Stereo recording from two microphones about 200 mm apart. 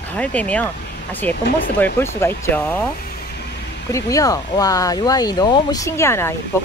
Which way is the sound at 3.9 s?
15° left (ahead or behind).